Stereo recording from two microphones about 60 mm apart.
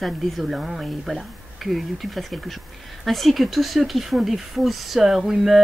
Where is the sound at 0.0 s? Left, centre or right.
Centre.